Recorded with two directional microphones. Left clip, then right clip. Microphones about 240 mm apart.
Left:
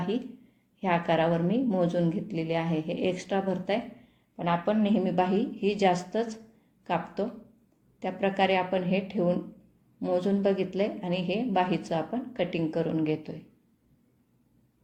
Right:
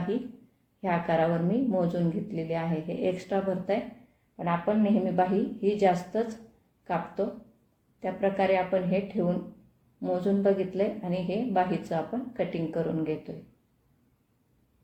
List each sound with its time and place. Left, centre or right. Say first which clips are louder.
0.8 s a woman's voice: left 1 dB; left